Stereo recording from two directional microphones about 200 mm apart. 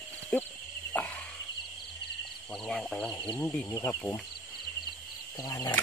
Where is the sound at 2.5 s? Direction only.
Centre (ahead or behind).